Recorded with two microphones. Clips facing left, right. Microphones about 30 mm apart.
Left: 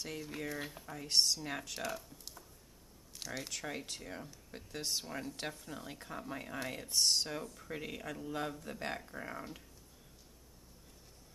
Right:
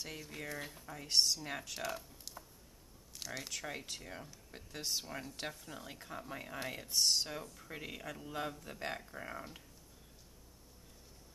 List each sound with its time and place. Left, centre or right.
0.0 s speech: centre
3.2 s speech: centre